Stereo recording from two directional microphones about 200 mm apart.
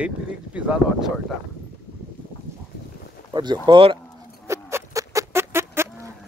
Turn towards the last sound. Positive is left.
turn(degrees=-10)  # may be behind; listen again after turning